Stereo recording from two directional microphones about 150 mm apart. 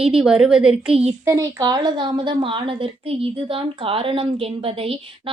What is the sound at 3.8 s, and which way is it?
Speech, 40° right (ahead or behind).